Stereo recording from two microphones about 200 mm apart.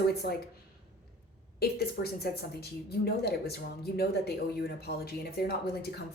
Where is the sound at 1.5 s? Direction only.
50° left (ahead or behind).